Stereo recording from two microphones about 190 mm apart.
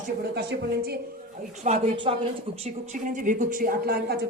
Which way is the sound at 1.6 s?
35° right (ahead or behind).